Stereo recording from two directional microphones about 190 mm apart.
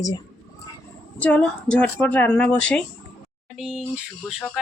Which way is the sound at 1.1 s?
5° left (ahead or behind).